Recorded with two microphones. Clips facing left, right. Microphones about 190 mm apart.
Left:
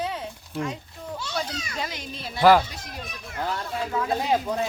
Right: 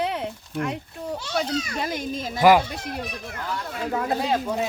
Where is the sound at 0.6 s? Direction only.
65° right (ahead or behind).